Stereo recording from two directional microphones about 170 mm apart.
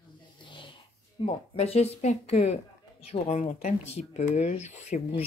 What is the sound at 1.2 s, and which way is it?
A woman's voice, 35° left (ahead or behind).